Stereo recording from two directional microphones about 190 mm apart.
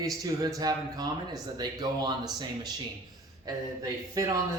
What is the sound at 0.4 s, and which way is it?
Speech, 20° right (ahead or behind).